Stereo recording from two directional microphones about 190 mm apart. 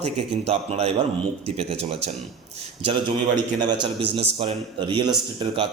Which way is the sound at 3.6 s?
25° right (ahead or behind).